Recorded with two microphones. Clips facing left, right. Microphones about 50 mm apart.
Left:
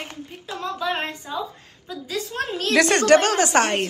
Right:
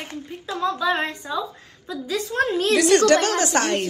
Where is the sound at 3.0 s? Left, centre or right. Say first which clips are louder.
Left 2 dB; left.